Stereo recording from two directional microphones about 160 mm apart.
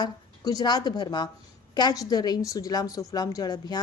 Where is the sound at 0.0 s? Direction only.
25° left (ahead or behind).